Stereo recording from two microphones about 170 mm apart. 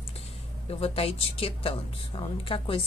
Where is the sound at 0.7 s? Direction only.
35° left (ahead or behind).